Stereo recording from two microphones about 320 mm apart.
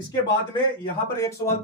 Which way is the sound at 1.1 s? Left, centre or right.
Centre.